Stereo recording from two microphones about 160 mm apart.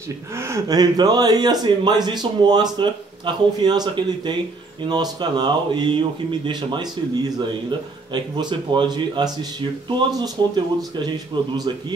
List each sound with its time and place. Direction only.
0.4 s speech: 20° right (ahead or behind)
8.1 s speech: 30° right (ahead or behind)